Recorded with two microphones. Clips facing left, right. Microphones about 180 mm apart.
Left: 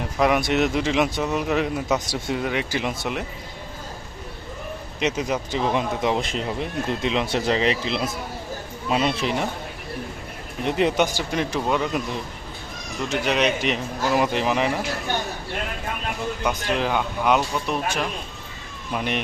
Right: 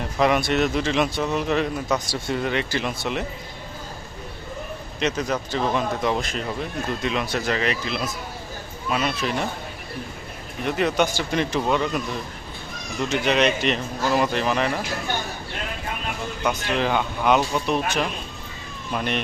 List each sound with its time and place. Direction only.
0.2 s speech: 5° left (ahead or behind)
4.9 s speech: 15° left (ahead or behind)
10.7 s speech: 25° left (ahead or behind)
11.3 s speech: 5° left (ahead or behind)
13.1 s speech: 5° left (ahead or behind)
16.6 s speech: 5° left (ahead or behind)